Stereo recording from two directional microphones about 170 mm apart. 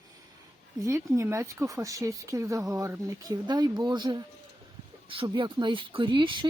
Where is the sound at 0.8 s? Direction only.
15° right (ahead or behind).